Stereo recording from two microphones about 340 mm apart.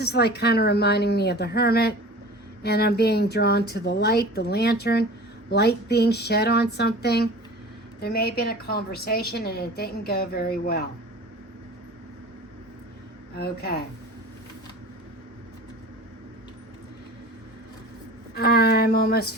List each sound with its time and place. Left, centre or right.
0.0 s a woman's voice: left
13.3 s a woman's voice: left
18.3 s a woman's voice: left